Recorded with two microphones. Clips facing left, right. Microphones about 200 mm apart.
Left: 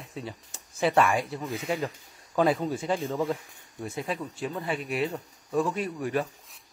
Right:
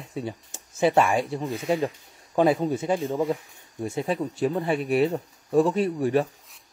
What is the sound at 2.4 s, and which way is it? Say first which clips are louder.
Speech: right 4 dB; 20° right (ahead or behind).